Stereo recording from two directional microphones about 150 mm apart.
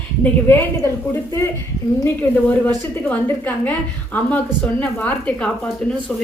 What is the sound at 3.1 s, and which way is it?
A woman's voice, 10° left (ahead or behind).